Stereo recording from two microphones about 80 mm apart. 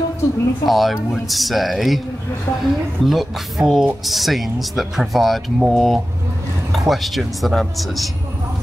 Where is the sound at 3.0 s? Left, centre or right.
Centre.